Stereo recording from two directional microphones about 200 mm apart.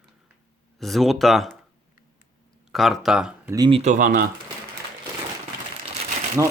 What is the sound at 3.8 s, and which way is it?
Speech, 40° right (ahead or behind).